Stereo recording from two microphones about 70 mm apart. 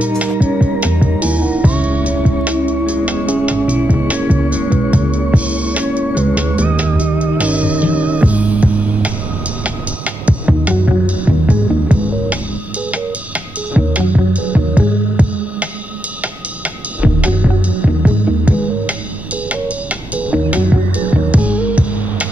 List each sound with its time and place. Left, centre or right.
0.0 s music: centre
10.2 s music: centre
13.7 s music: centre
17.0 s music: centre
20.2 s music: centre